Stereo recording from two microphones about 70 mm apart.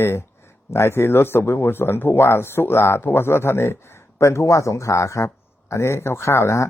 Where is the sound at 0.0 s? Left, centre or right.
Left.